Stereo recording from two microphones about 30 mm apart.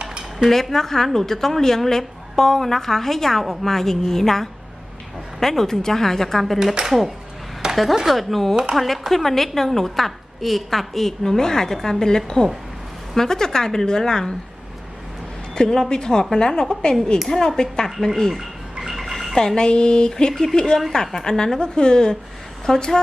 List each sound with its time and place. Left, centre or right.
0.0 s cutlery: right
0.5 s a woman's voice: centre
6.8 s speech: centre
7.6 s a sound: right
8.0 s a woman's voice: centre
15.5 s a woman's voice: centre
18.3 s a sound: centre
19.1 s bathtub: centre
19.4 s a woman's voice: left
21.6 s speech: left